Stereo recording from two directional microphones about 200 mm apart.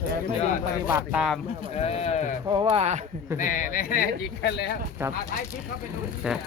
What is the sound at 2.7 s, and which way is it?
Speech, 35° right (ahead or behind).